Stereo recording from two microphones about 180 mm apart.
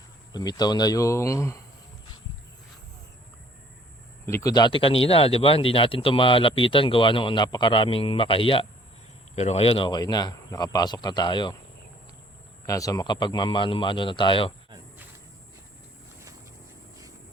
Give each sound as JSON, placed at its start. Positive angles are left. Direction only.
{"t": 0.3, "sound": "speech", "side_deg": 20}
{"t": 4.3, "sound": "speech", "side_deg": 15}
{"t": 12.6, "sound": "speech", "side_deg": 20}